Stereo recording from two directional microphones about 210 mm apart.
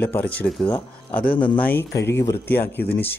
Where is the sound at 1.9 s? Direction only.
55° left (ahead or behind).